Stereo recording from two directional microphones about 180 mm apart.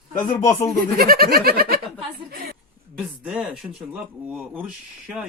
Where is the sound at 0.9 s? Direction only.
55° right (ahead or behind).